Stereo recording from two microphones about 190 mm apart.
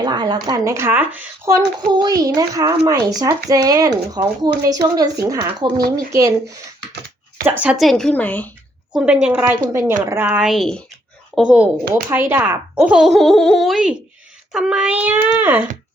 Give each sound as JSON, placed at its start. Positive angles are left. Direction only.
{"t": 0.0, "sound": "speech", "side_deg": -20}
{"t": 7.6, "sound": "speech", "side_deg": -5}
{"t": 9.2, "sound": "speech", "side_deg": -10}